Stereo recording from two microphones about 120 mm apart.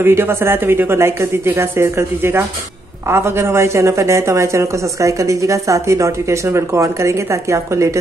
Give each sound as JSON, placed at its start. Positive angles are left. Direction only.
{"t": 0.0, "sound": "a woman's voice", "side_deg": -20}